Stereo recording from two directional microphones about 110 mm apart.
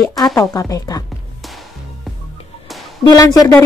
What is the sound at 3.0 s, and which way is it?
Speech, 35° left (ahead or behind).